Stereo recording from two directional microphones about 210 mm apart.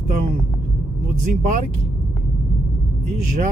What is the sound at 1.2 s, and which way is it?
Speech, 35° right (ahead or behind).